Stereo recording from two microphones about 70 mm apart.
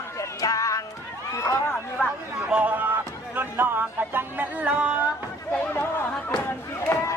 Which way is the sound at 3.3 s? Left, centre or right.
Right.